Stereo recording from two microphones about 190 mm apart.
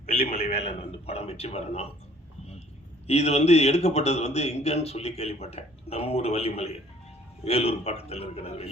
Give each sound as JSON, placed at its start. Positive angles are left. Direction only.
{"t": 0.0, "sound": "a man's voice", "side_deg": 30}
{"t": 3.1, "sound": "a man's voice", "side_deg": 35}